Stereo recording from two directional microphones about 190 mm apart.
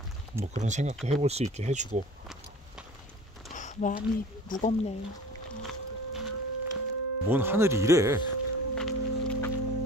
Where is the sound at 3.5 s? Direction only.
40° left (ahead or behind).